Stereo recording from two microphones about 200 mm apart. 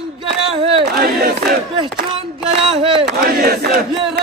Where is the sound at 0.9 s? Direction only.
50° right (ahead or behind).